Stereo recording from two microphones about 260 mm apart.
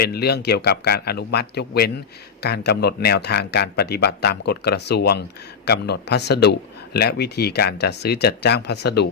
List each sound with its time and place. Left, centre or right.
0.0 s speech: left